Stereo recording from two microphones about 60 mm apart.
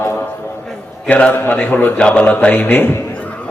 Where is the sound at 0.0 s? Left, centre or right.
Left.